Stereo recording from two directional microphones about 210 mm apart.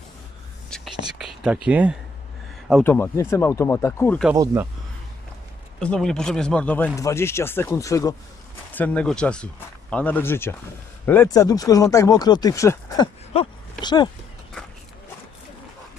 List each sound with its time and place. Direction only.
0.7 s whispering: centre (ahead or behind)
2.8 s speech: 10° left (ahead or behind)
5.8 s speech: 5° left (ahead or behind); by 14.1 s 20° left (ahead or behind)